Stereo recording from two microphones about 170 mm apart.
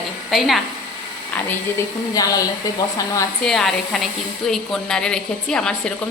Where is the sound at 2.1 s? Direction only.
20° left (ahead or behind).